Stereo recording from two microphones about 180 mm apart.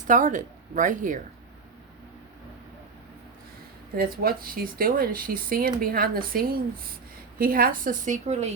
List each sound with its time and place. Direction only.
0.1 s speech: 45° right (ahead or behind)
3.9 s speech: 55° right (ahead or behind); by 8.5 s 40° right (ahead or behind)